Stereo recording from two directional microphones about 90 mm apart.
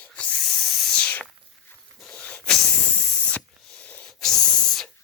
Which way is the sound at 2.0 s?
10° left (ahead or behind).